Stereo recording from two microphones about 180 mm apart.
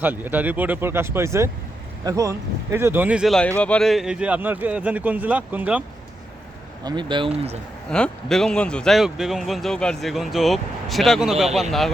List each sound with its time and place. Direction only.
0.0 s speech: 10° right (ahead or behind)
6.8 s speech: 25° right (ahead or behind)
7.9 s speech: 5° left (ahead or behind)